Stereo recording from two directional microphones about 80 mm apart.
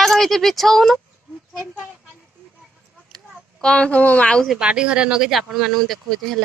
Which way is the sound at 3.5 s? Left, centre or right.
Centre.